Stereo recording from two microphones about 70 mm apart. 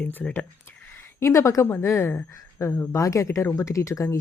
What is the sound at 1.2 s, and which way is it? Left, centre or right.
A woman's voice, left.